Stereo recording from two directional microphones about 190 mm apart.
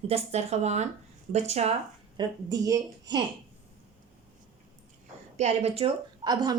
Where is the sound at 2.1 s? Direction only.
20° right (ahead or behind).